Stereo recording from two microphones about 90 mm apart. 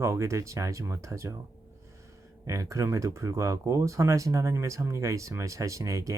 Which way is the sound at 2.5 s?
35° right (ahead or behind).